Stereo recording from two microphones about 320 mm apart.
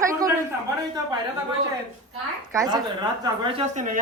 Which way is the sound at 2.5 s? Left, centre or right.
Centre.